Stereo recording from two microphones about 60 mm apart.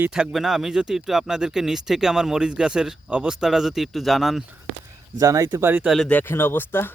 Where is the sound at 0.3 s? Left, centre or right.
Centre.